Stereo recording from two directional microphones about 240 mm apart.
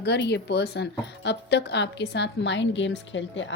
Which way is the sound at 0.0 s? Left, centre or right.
Left.